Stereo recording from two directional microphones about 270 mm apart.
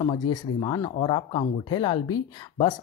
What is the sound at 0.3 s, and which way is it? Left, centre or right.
Speech, centre.